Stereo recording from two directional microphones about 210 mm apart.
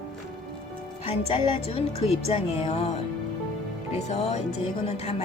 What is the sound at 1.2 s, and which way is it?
A woman's voice, 30° left (ahead or behind).